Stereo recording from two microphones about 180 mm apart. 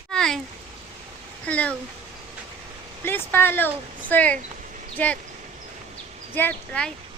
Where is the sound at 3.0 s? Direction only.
10° left (ahead or behind).